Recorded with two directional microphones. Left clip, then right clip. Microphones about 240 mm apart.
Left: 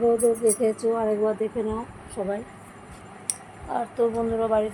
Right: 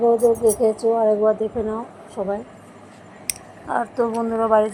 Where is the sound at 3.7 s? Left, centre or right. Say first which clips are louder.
Right 3 dB; right.